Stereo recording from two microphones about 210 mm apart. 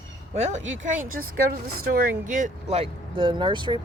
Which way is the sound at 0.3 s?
35° right (ahead or behind).